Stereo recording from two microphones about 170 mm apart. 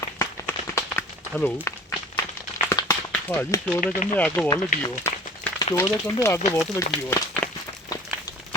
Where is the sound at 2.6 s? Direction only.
15° left (ahead or behind).